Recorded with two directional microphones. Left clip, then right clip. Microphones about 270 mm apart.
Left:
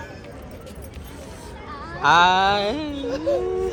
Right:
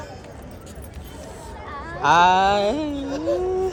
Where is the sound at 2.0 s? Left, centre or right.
Centre.